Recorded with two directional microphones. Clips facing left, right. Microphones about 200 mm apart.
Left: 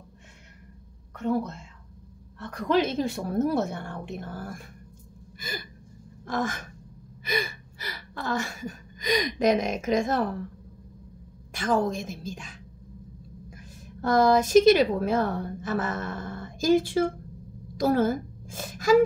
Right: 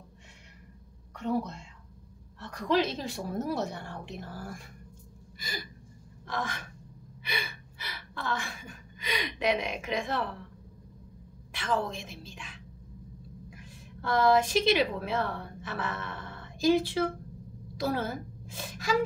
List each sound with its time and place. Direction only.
2.4 s a woman's voice: 55° left (ahead or behind)
11.5 s a woman's voice: 45° left (ahead or behind)
17.7 s a sound: 45° left (ahead or behind)